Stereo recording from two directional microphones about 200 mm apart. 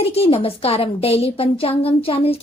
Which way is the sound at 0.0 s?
30° left (ahead or behind).